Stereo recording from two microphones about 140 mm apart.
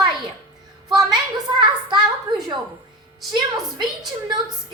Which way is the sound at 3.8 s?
30° right (ahead or behind).